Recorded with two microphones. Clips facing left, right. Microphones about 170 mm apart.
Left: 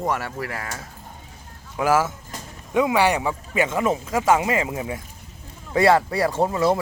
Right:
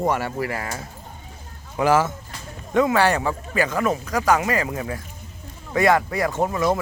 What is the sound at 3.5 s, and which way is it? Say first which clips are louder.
Speech: left 1 dB; 25° left (ahead or behind).